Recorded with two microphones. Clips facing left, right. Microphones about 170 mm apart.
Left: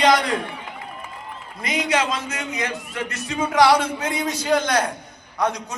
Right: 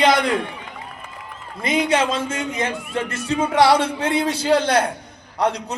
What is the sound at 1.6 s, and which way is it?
A man's voice, 25° right (ahead or behind).